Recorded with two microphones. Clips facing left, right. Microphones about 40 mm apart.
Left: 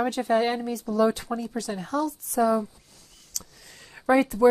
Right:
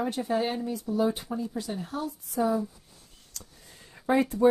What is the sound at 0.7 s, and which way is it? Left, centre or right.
Speech, left.